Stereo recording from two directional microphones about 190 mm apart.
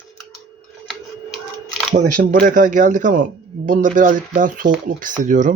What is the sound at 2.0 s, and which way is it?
Speech, 50° right (ahead or behind).